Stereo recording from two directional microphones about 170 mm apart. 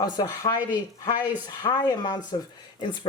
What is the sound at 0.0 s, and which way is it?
Speech, 20° left (ahead or behind).